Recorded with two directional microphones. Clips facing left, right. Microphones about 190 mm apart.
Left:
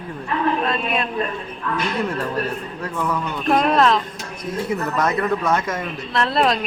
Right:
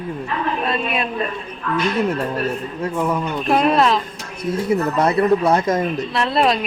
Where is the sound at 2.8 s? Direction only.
25° right (ahead or behind).